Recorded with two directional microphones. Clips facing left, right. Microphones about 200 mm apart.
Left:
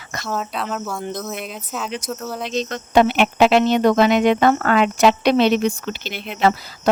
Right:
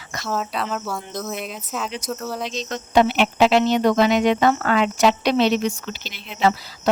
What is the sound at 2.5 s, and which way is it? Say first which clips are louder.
Speech: left 3 dB; 55° left (ahead or behind).